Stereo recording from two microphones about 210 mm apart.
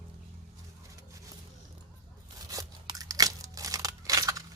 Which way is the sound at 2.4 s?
15° right (ahead or behind).